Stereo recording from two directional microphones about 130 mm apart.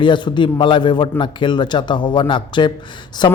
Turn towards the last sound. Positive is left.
turn(degrees=35)  # may be behind; listen again after turning